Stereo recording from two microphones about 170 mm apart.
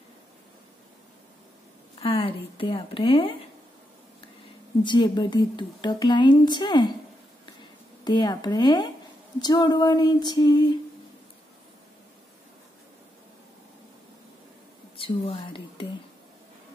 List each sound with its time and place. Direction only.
2.0 s speech: 30° left (ahead or behind)
4.8 s a woman's voice: 25° left (ahead or behind)
8.0 s a woman's voice: 25° left (ahead or behind)
15.0 s speech: 30° left (ahead or behind)